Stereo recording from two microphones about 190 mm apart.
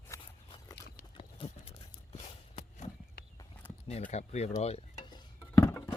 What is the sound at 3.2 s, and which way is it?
Horse, 60° left (ahead or behind).